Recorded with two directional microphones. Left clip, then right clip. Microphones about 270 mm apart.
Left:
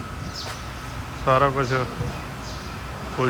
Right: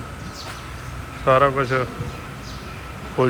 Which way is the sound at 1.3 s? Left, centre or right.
Centre.